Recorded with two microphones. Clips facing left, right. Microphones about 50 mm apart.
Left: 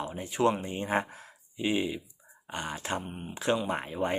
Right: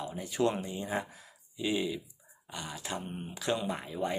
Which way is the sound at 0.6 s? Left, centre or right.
Left.